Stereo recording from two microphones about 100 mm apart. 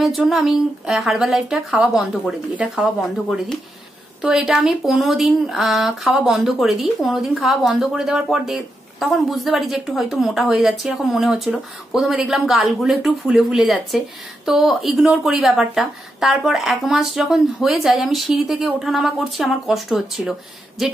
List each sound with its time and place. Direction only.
0.0 s speech: centre (ahead or behind)